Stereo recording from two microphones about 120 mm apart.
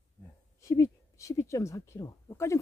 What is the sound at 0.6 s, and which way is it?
Speech, 25° left (ahead or behind).